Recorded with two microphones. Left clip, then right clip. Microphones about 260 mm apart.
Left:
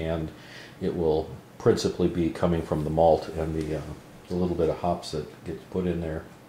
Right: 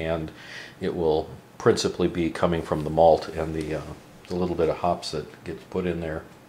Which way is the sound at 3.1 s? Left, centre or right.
Centre.